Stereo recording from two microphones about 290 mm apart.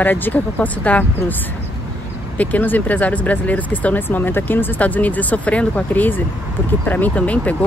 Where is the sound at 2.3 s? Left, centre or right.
Centre.